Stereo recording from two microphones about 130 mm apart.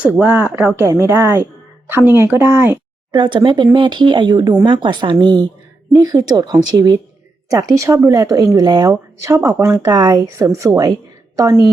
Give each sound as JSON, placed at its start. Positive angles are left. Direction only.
{"t": 0.0, "sound": "speech", "side_deg": -10}
{"t": 3.1, "sound": "speech", "side_deg": -35}